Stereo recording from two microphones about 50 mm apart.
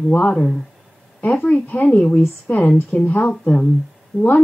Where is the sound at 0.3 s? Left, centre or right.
Centre.